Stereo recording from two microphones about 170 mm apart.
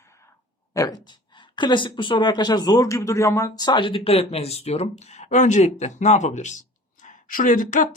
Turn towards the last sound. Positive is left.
turn(degrees=50)  # may be behind; listen again after turning